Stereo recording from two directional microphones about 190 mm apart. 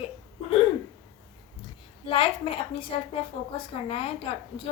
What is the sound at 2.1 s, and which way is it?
Speech, 30° left (ahead or behind).